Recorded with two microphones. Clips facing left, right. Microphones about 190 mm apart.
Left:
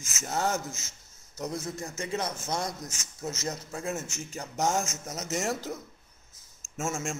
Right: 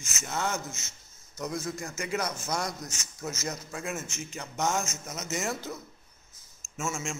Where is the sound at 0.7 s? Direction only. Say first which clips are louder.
Even; 90° left.